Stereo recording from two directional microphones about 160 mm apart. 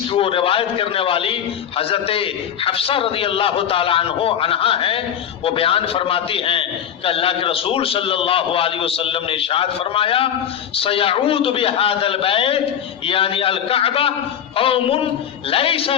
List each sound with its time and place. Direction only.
0.1 s a man's voice: 35° left (ahead or behind)